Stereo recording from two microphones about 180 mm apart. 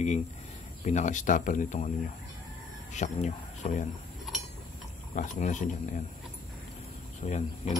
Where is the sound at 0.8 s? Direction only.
40° left (ahead or behind).